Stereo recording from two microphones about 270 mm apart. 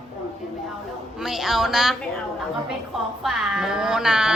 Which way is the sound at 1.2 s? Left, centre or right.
Centre.